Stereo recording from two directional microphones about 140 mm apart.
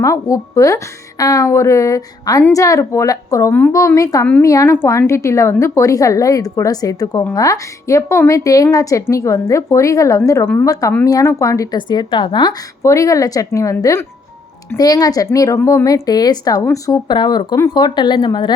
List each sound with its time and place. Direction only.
0.0 s a woman's voice: 20° left (ahead or behind)